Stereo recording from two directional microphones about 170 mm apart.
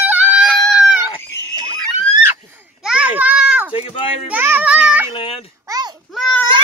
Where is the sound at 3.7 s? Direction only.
30° left (ahead or behind).